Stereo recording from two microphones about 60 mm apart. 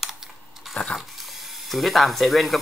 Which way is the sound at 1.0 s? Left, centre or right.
Centre.